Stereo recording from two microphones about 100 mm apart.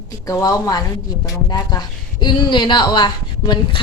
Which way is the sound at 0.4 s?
40° left (ahead or behind).